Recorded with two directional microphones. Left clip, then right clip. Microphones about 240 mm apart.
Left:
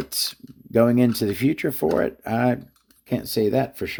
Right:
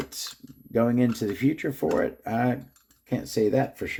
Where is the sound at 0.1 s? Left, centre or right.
Left.